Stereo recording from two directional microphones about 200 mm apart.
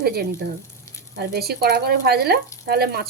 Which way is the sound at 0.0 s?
50° right (ahead or behind).